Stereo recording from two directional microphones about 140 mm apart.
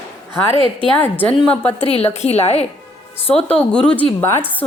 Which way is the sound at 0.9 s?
15° left (ahead or behind).